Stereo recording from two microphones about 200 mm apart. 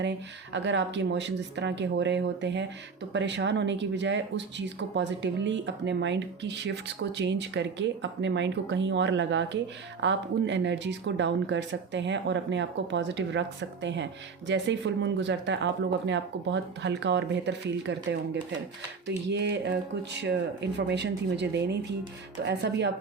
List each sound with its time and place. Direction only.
0.5 s speech: 65° right (ahead or behind)